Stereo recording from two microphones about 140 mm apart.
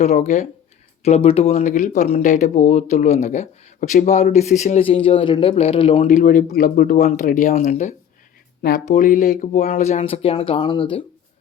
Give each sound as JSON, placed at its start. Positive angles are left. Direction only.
{"t": 0.0, "sound": "speech", "side_deg": 55}
{"t": 1.0, "sound": "speech", "side_deg": 45}
{"t": 1.6, "sound": "speech", "side_deg": 65}
{"t": 4.8, "sound": "speech", "side_deg": 40}
{"t": 6.1, "sound": "speech", "side_deg": 70}
{"t": 10.0, "sound": "speech", "side_deg": 45}